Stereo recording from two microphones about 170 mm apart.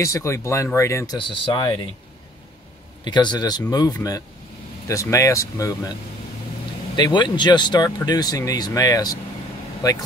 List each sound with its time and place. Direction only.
0.0 s speech: 15° left (ahead or behind)
1.1 s speech: 30° left (ahead or behind)
3.0 s speech: 25° left (ahead or behind)
7.0 s speech: 25° left (ahead or behind)